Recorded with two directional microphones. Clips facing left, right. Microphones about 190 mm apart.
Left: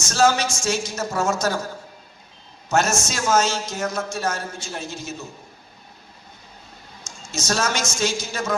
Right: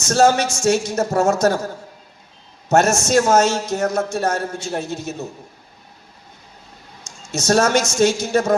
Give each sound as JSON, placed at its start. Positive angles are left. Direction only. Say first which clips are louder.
{"t": 0.0, "sound": "a man's voice", "louder": "right 4 dB", "side_deg": -60}
{"t": 2.6, "sound": "a man's voice", "louder": "right 6 dB", "side_deg": -65}
{"t": 7.3, "sound": "a man's voice", "louder": "right 8 dB", "side_deg": -60}